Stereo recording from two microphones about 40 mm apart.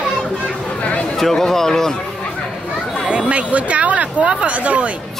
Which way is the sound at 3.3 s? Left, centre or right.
Right.